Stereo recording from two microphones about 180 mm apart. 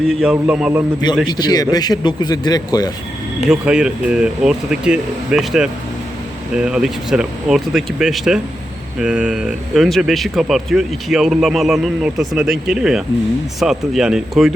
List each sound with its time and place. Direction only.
0.1 s speech: 5° right (ahead or behind)
1.3 s speech: 20° left (ahead or behind)
3.5 s speech: 5° right (ahead or behind)